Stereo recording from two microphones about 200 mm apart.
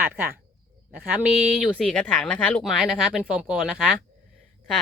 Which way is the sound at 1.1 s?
5° right (ahead or behind).